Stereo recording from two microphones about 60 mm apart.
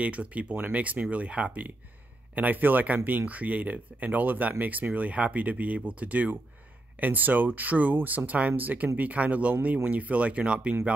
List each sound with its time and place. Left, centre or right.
0.0 s speech: right